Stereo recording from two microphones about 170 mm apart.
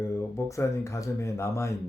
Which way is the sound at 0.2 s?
20° left (ahead or behind).